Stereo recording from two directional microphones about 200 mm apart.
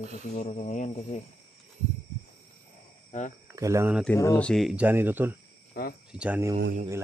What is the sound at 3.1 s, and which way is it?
Speech, 35° left (ahead or behind).